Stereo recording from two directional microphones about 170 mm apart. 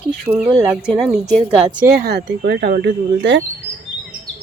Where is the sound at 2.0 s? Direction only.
75° right (ahead or behind).